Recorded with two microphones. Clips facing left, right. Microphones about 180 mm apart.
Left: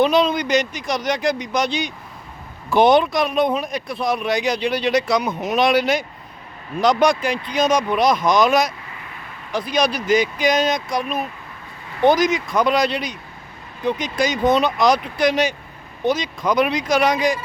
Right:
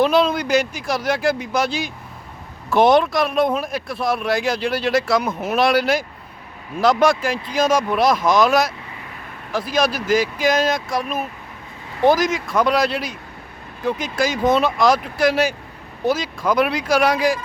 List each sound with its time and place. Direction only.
0.0 s speech: 5° right (ahead or behind)